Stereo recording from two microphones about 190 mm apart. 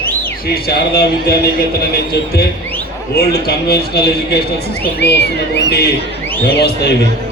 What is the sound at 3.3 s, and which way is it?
A man's voice, 55° left (ahead or behind).